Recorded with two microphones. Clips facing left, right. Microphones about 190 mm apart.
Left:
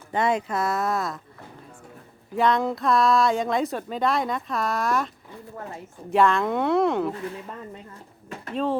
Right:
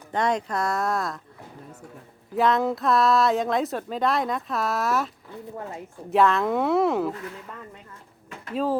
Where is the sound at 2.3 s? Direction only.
Centre (ahead or behind).